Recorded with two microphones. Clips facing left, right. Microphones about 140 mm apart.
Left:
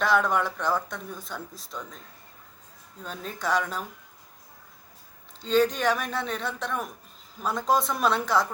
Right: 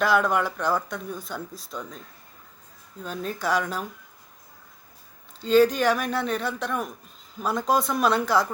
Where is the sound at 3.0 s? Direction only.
Centre (ahead or behind).